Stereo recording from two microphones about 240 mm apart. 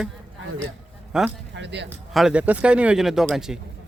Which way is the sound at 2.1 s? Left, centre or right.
Centre.